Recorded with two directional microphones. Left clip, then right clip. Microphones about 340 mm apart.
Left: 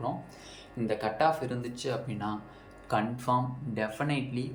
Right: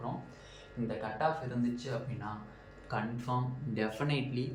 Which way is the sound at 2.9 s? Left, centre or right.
Centre.